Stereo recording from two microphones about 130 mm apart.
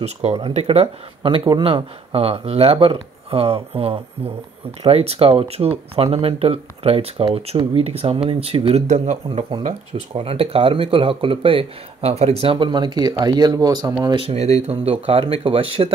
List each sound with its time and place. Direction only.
0.0 s speech: 55° right (ahead or behind)
8.8 s speech: 65° right (ahead or behind)
10.1 s speech: 50° right (ahead or behind); by 13.9 s 30° right (ahead or behind)
14.0 s speech: 45° right (ahead or behind)